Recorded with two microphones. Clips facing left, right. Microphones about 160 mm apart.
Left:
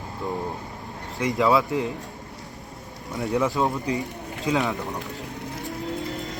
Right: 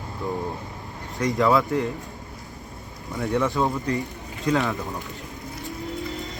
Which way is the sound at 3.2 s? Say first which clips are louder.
Even; 5° left (ahead or behind).